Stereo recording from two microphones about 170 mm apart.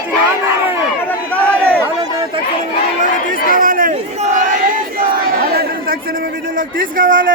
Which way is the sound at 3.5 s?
55° right (ahead or behind).